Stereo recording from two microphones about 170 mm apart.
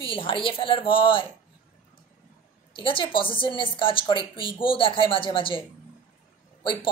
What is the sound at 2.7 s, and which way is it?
A woman's voice, 30° left (ahead or behind).